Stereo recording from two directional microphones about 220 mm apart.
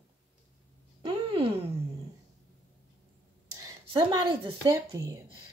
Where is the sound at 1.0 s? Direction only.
25° right (ahead or behind).